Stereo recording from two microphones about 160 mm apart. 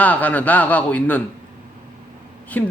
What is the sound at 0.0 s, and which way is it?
A man's voice, 10° left (ahead or behind).